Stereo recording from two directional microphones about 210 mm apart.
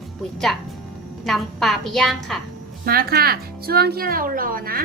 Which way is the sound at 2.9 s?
45° right (ahead or behind).